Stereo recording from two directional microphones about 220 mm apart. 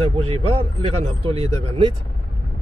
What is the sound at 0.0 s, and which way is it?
A man's voice, 25° right (ahead or behind).